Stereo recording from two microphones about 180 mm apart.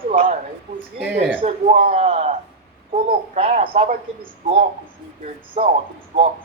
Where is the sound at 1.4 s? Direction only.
35° right (ahead or behind).